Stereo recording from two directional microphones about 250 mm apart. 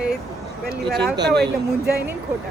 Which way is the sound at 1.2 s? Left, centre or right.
Right.